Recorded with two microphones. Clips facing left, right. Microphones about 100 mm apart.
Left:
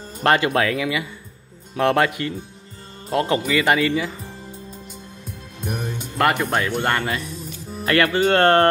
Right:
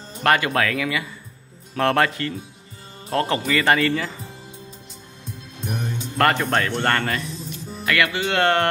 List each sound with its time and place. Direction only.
0.2 s speech: 25° left (ahead or behind)
6.1 s speech: 10° left (ahead or behind)
7.8 s speech: 40° left (ahead or behind)